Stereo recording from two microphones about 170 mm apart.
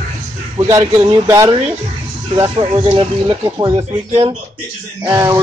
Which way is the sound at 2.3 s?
30° right (ahead or behind).